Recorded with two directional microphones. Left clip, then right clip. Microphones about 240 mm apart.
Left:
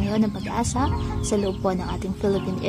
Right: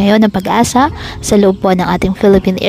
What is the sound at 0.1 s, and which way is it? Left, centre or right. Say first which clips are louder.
A woman's voice: right 15 dB; right.